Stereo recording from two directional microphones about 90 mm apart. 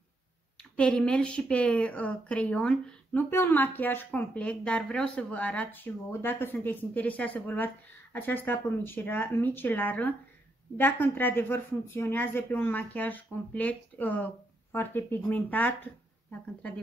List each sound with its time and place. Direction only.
0.6 s speech: 10° left (ahead or behind)
3.3 s a woman's voice: 25° left (ahead or behind)